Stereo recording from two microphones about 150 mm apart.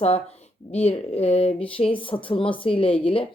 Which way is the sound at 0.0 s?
45° left (ahead or behind).